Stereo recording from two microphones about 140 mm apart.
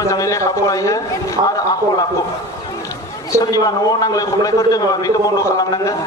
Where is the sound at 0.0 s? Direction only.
20° left (ahead or behind).